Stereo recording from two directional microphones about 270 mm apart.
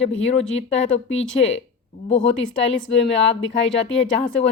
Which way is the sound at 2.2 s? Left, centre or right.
Left.